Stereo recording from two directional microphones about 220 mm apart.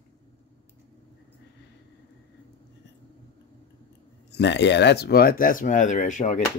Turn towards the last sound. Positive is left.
turn(degrees=35)  # may be behind; listen again after turning